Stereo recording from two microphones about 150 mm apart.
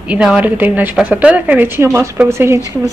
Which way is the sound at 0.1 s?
5° right (ahead or behind).